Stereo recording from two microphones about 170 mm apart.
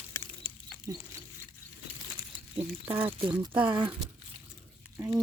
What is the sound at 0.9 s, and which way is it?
Speech, 20° right (ahead or behind).